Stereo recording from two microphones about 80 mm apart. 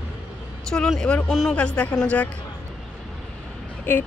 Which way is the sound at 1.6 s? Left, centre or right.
Centre.